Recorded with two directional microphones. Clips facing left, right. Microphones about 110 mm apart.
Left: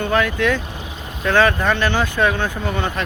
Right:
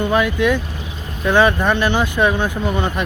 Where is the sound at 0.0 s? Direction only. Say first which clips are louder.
Right 2 dB; 15° right (ahead or behind).